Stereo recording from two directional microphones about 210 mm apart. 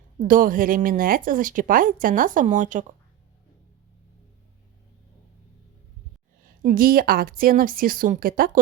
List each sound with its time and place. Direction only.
0.2 s a woman's voice: 40° right (ahead or behind)
6.6 s a woman's voice: 45° right (ahead or behind)